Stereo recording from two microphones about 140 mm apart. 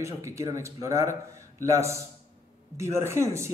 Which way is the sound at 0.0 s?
20° right (ahead or behind).